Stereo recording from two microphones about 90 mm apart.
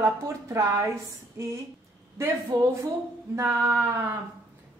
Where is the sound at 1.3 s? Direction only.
35° right (ahead or behind).